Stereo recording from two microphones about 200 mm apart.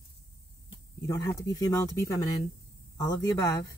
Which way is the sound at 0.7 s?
15° left (ahead or behind).